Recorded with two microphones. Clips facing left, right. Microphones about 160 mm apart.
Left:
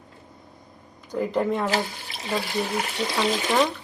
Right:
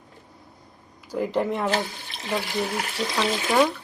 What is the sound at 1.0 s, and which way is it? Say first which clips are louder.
A woman's voice: even; 5° right (ahead or behind).